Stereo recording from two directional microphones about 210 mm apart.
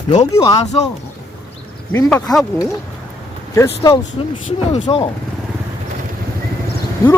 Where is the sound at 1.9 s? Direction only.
10° left (ahead or behind).